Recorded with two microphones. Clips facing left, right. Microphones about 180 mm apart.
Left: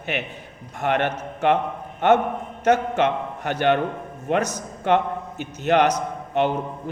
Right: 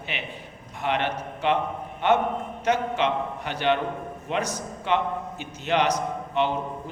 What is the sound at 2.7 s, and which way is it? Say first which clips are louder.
A man's voice: left 5 dB; 50° left (ahead or behind).